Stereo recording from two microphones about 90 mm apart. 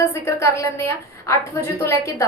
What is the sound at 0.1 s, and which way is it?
A woman's voice, 30° left (ahead or behind).